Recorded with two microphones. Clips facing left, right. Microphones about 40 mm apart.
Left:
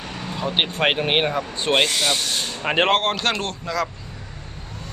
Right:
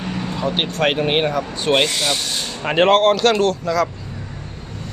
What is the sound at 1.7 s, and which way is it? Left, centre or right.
Speech, centre.